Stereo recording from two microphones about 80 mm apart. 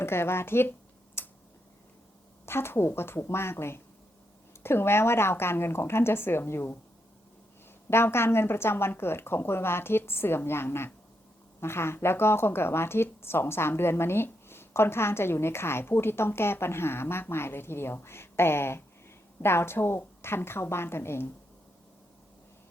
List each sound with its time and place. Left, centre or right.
0.0 s speech: left
1.2 s a sound: left
2.5 s speech: left
7.9 s a woman's voice: left